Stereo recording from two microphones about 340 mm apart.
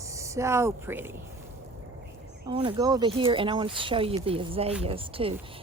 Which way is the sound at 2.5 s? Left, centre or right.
Centre.